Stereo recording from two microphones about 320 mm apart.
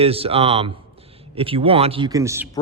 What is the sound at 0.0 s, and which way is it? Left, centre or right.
Speech, centre.